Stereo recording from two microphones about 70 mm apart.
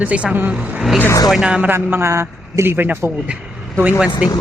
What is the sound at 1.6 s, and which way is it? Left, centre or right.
A man's voice, right.